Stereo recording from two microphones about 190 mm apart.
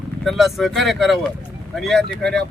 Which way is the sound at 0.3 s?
Centre (ahead or behind).